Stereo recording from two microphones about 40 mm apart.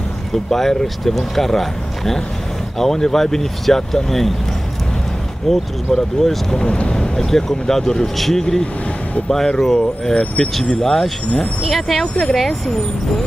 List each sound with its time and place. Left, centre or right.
0.3 s speech: centre
5.5 s speech: centre
6.6 s speech: left
6.9 s speech: centre
10.1 s speech: left
10.5 s speech: centre
11.6 s speech: centre